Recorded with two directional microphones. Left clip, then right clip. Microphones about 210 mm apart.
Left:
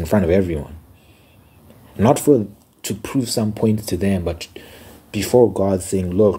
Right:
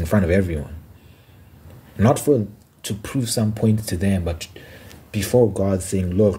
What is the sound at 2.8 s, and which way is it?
Speech, 30° right (ahead or behind).